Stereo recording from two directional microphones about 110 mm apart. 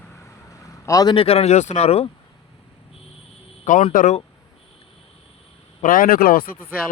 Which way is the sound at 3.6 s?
75° left (ahead or behind).